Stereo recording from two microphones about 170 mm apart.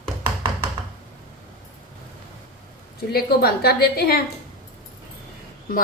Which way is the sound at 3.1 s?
65° left (ahead or behind).